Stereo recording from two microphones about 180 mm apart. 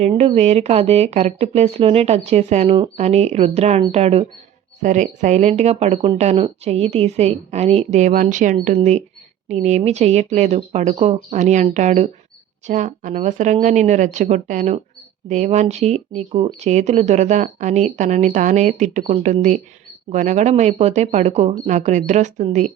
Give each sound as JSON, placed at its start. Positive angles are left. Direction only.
{"t": 0.1, "sound": "speech", "side_deg": -30}